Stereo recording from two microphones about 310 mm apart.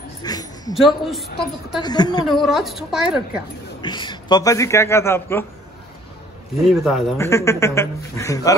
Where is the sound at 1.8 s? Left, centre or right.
Centre.